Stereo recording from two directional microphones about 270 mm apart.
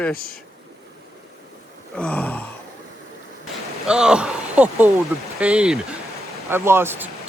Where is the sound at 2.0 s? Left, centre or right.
Centre.